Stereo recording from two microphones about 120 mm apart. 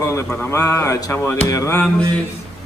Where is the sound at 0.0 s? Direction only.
25° left (ahead or behind).